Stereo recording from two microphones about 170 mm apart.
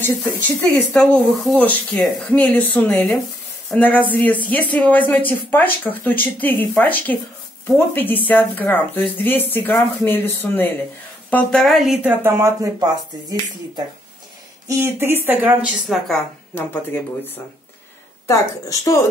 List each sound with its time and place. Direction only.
0.0 s speech: 10° left (ahead or behind)
12.2 s speech: 15° right (ahead or behind)
16.5 s a woman's voice: 10° left (ahead or behind)